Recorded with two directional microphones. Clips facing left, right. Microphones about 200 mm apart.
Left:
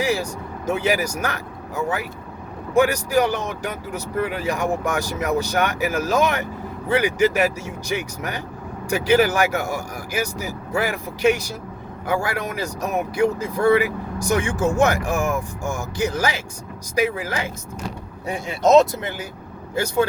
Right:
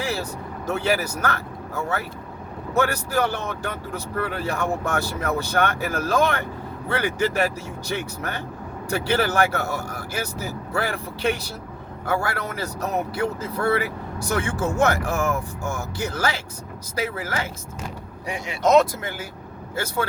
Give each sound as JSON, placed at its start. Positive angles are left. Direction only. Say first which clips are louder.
{"t": 0.7, "sound": "speech", "louder": "left 2 dB", "side_deg": 10}
{"t": 2.7, "sound": "speech", "louder": "left 5 dB", "side_deg": 15}
{"t": 18.7, "sound": "speech", "louder": "left 3 dB", "side_deg": 20}